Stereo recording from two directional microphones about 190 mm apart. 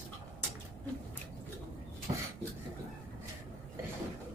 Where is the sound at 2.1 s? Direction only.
30° right (ahead or behind).